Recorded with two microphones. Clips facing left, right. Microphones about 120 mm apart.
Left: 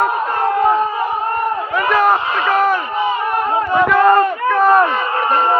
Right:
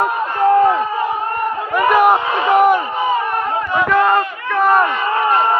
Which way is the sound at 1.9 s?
15° right (ahead or behind).